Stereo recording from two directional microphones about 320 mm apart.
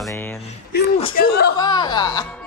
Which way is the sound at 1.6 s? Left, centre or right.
Centre.